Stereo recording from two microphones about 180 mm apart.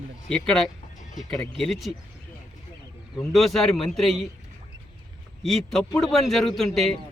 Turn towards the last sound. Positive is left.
turn(degrees=0)  # may be behind; listen again after turning